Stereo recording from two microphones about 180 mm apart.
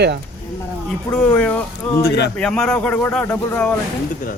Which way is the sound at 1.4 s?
10° left (ahead or behind).